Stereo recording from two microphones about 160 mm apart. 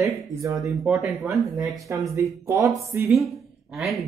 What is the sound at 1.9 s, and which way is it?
Speech, 20° right (ahead or behind).